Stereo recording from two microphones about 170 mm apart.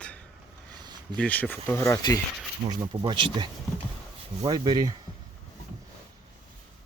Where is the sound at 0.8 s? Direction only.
25° right (ahead or behind).